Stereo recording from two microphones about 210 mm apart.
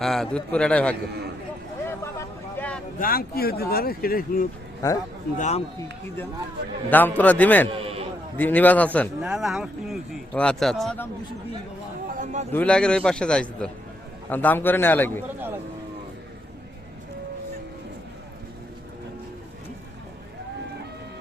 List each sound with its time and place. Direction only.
0.0 s speech: centre (ahead or behind)
1.9 s a sound: 10° left (ahead or behind)
3.0 s speech: 45° left (ahead or behind)
4.8 s a man's voice: 15° left (ahead or behind)
5.4 s a man's voice: 30° left (ahead or behind)
6.9 s a man's voice: 10° left (ahead or behind)
7.8 s sheep: 25° right (ahead or behind)
8.4 s speech: 10° left (ahead or behind)
12.0 s a sound: 35° right (ahead or behind)
12.5 s a man's voice: 5° left (ahead or behind)
15.4 s speech: 10° right (ahead or behind)